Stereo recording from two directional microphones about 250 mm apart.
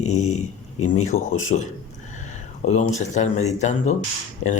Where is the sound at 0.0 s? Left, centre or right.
Left.